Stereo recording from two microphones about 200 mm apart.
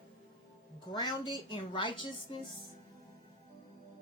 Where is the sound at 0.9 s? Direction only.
20° left (ahead or behind).